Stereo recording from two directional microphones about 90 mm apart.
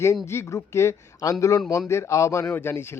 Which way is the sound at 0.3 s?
30° left (ahead or behind).